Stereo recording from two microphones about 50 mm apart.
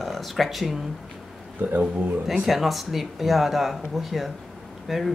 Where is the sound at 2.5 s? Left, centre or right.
Centre.